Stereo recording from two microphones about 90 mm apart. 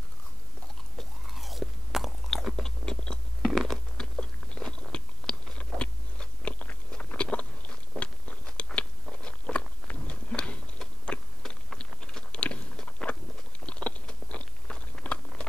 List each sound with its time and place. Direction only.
0.9 s chewing: centre (ahead or behind)
3.5 s biting: 5° left (ahead or behind)
12.8 s a sound: 15° left (ahead or behind)
13.7 s biting: 10° left (ahead or behind)